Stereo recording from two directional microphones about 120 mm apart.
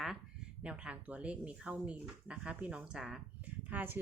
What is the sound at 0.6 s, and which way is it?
Speech, 10° right (ahead or behind).